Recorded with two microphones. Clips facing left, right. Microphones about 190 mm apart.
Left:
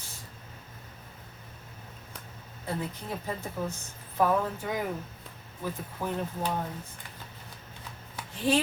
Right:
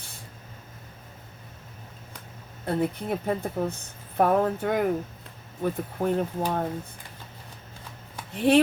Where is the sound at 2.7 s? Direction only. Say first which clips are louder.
Right 8 dB; 60° right (ahead or behind).